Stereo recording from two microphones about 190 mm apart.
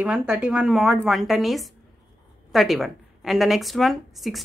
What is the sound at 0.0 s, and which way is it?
A woman's voice, 5° right (ahead or behind).